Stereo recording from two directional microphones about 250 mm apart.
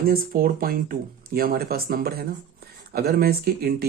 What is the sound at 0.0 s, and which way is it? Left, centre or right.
Speech, right.